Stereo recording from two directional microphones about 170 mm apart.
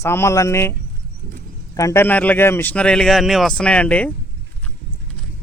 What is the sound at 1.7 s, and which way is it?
Speech, 15° left (ahead or behind).